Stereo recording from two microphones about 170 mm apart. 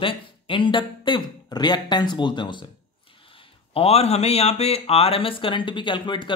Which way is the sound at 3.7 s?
35° left (ahead or behind).